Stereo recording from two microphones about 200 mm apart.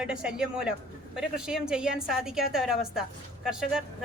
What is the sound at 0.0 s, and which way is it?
Speech, 5° right (ahead or behind).